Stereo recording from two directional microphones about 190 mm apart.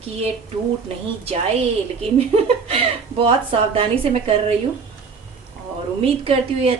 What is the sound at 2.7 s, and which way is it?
Speech, 30° right (ahead or behind).